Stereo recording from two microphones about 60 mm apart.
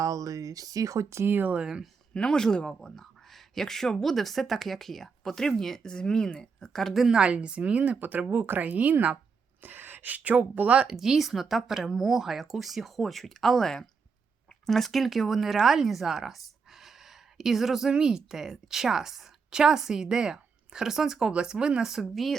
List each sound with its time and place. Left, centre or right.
0.0 s speech: right
1.2 s speech: right
1.5 s speech: centre
2.1 s speech: centre
7.1 s speech: centre
10.8 s speech: centre